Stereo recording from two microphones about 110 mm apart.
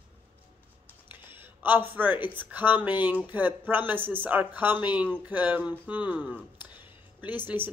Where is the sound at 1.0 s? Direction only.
20° right (ahead or behind).